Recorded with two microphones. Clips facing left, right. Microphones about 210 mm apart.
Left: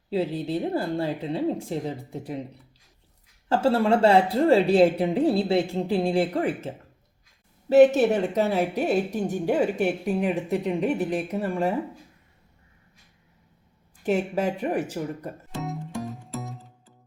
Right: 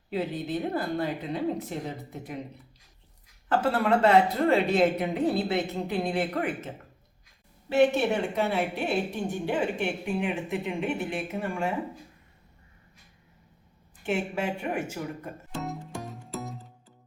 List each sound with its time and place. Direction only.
0.1 s speech: 30° left (ahead or behind)
3.5 s a woman's voice: 30° left (ahead or behind)
14.0 s a woman's voice: 40° left (ahead or behind)
15.5 s music: centre (ahead or behind)